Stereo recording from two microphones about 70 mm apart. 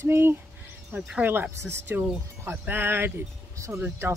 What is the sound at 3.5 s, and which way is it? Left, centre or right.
Speech, right.